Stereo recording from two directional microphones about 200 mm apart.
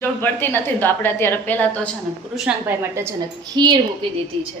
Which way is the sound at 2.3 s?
5° right (ahead or behind).